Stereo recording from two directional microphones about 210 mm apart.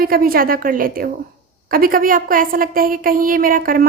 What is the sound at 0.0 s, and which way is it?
A woman's voice, 45° right (ahead or behind).